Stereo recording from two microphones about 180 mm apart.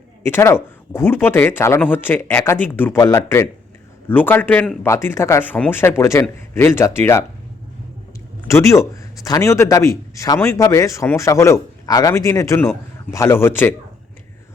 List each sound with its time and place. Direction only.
0.2 s speech: 15° left (ahead or behind)
8.4 s speech: 15° left (ahead or behind)